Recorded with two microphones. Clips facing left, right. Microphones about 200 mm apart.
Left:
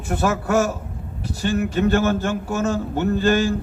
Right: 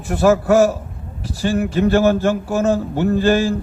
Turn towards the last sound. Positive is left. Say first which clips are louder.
# right 3 dB
turn(degrees=-35)  # may be behind; listen again after turning